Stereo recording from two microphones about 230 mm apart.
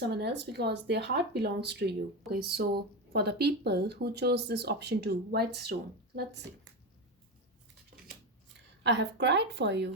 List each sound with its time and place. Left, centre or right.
0.1 s speech: right
8.8 s speech: right